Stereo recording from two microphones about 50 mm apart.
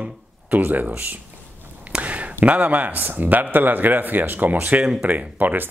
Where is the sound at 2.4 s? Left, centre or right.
Right.